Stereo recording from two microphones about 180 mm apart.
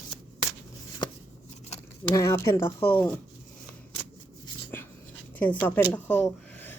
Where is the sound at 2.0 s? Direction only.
20° left (ahead or behind).